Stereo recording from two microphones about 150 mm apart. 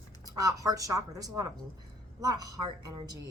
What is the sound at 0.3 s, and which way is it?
A woman's voice, 25° right (ahead or behind).